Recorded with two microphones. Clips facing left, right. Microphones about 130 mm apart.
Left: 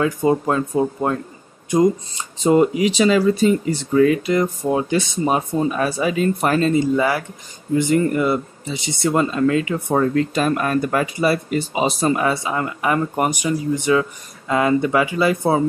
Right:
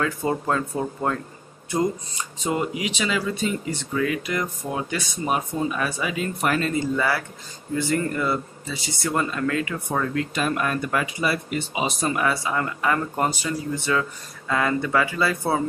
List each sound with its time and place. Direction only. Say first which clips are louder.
0.0 s speech: left 7 dB; 15° left (ahead or behind)
2.4 s speech: left 11 dB; 40° left (ahead or behind)
6.7 s speech: left 6 dB; 20° left (ahead or behind)
9.9 s speech: left 7 dB; 35° left (ahead or behind); by 15.6 s 20° left (ahead or behind)